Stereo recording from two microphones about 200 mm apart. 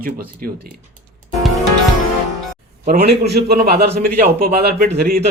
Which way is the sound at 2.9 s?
55° right (ahead or behind).